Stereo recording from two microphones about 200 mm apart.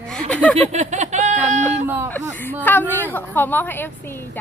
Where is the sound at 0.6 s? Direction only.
35° right (ahead or behind).